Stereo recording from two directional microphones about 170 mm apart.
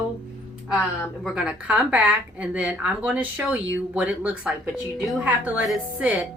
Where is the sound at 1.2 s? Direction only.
5° right (ahead or behind).